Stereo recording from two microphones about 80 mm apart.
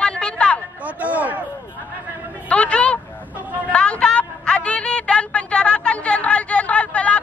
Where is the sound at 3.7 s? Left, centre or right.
Centre.